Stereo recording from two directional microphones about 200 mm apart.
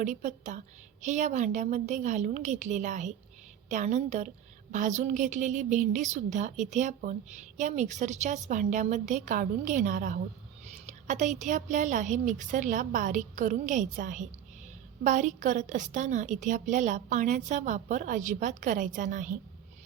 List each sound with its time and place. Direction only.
0.0 s a woman's voice: 35° right (ahead or behind)